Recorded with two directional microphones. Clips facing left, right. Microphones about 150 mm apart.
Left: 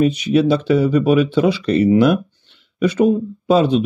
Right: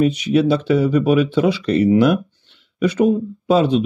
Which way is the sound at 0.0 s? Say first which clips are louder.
Left 1 dB; 30° left (ahead or behind).